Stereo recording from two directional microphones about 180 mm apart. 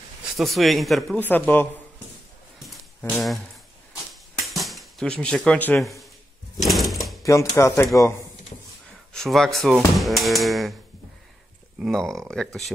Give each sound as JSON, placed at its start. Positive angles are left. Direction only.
{"t": 0.4, "sound": "a man's voice", "side_deg": 0}
{"t": 2.6, "sound": "a sound", "side_deg": 5}
{"t": 7.2, "sound": "speech", "side_deg": 15}
{"t": 9.1, "sound": "a man's voice", "side_deg": 0}
{"t": 11.8, "sound": "a man's voice", "side_deg": 0}